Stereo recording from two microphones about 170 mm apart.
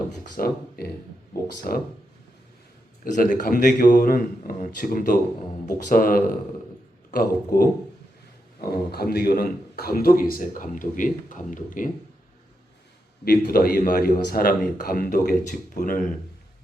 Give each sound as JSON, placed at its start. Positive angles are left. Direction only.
{"t": 0.3, "sound": "speech", "side_deg": 65}
{"t": 3.0, "sound": "a man's voice", "side_deg": 55}
{"t": 8.9, "sound": "speech", "side_deg": 65}
{"t": 13.2, "sound": "speech", "side_deg": 65}